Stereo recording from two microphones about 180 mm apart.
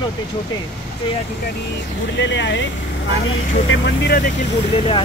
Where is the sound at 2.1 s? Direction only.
85° left.